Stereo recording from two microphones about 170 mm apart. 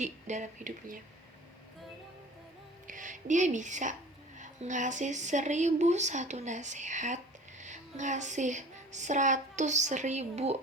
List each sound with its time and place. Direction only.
0.0 s speech: 45° right (ahead or behind)
2.8 s a woman's voice: 50° right (ahead or behind)